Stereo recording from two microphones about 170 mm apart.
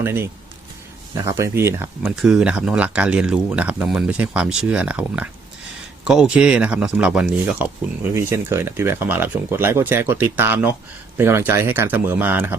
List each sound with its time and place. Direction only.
0.0 s speech: 15° right (ahead or behind)
2.1 s speech: 5° right (ahead or behind)